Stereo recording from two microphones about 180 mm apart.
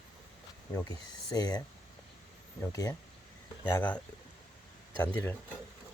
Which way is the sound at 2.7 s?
20° left (ahead or behind).